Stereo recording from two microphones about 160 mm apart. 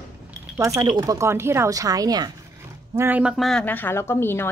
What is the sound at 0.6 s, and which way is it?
Speech, 20° right (ahead or behind).